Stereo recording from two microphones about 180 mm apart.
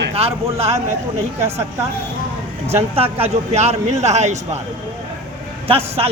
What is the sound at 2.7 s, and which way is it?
Speech, 35° right (ahead or behind).